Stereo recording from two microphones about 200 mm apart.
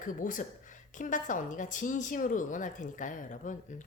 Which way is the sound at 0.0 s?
40° left (ahead or behind).